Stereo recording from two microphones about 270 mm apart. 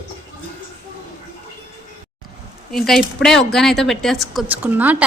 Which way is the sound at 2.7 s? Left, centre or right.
Centre.